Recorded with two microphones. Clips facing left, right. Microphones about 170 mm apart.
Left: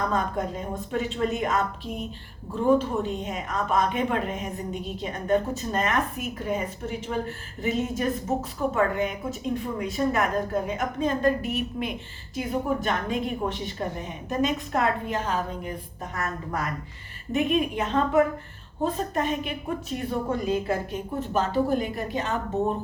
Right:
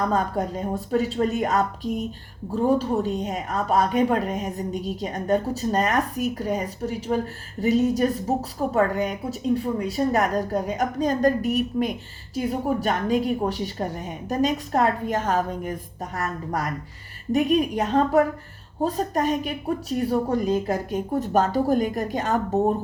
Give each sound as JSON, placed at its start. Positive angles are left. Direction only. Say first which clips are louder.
{"t": 0.1, "sound": "a woman's voice", "louder": "right 3 dB", "side_deg": -40}